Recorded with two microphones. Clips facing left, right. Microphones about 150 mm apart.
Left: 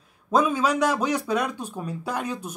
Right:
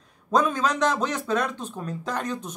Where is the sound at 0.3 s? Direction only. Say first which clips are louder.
Left 1 dB; 10° left (ahead or behind).